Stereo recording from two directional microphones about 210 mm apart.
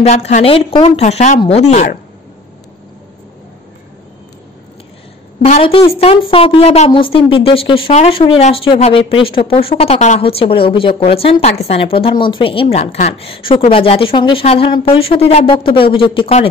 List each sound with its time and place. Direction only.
0.0 s speech: 30° left (ahead or behind)
5.4 s speech: 30° left (ahead or behind)